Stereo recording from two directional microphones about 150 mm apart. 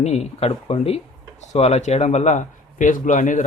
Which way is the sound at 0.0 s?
45° left (ahead or behind).